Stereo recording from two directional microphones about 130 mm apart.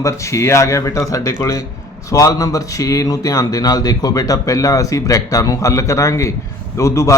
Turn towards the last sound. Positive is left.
turn(degrees=25)  # may be behind; listen again after turning